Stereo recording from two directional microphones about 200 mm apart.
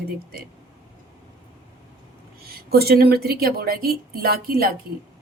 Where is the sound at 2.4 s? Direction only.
50° right (ahead or behind).